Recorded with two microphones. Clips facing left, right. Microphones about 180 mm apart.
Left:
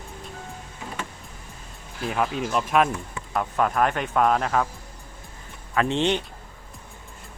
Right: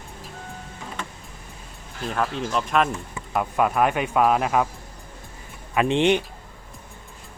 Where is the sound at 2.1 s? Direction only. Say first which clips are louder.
Even; 5° left (ahead or behind).